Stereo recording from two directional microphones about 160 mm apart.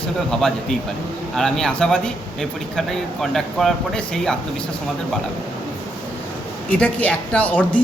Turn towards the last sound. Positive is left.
turn(degrees=10)  # may be behind; listen again after turning